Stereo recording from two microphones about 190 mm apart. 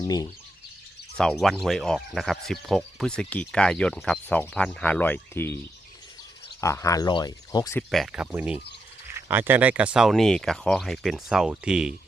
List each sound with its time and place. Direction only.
1.1 s speech: 5° left (ahead or behind)
6.6 s speech: 15° left (ahead or behind)
7.8 s speech: centre (ahead or behind)